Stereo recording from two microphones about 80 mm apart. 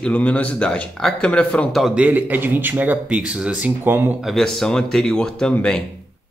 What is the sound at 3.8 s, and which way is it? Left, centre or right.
Speech, right.